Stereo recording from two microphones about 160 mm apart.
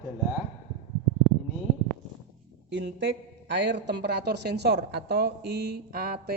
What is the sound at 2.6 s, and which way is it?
A woman's voice, 90° right.